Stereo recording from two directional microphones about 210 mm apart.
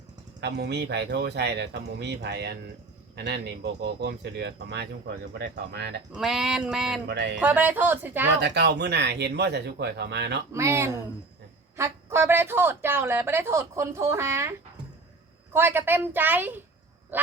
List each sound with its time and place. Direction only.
0.3 s speech: 55° right (ahead or behind)
6.1 s a sound: centre (ahead or behind)
7.1 s music: 55° right (ahead or behind)
7.3 s a woman's voice: 10° right (ahead or behind)
8.4 s speech: 55° right (ahead or behind)
10.5 s a woman's voice: 15° right (ahead or behind)
15.5 s a woman's voice: 10° right (ahead or behind)